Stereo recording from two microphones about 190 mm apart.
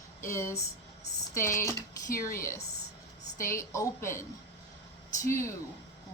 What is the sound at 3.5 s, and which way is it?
Speech, 15° left (ahead or behind).